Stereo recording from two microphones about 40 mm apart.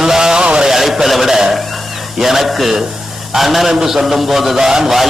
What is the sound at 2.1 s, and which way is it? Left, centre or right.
A man's voice, centre.